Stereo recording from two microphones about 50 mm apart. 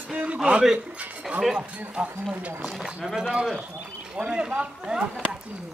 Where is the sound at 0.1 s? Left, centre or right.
Right.